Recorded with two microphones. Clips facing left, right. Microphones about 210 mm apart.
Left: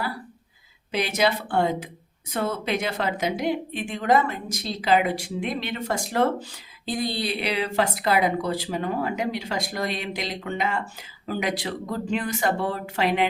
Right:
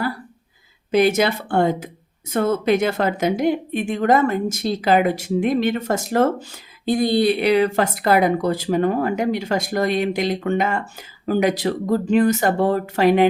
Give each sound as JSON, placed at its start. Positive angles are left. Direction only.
{"t": 0.9, "sound": "speech", "side_deg": -50}